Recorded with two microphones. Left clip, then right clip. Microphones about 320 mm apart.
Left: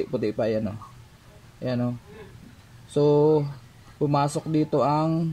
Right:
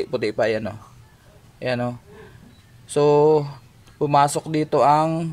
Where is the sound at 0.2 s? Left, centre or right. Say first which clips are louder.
Right 5 dB; right.